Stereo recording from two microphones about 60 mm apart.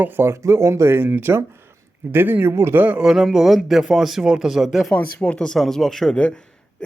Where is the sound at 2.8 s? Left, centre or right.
Right.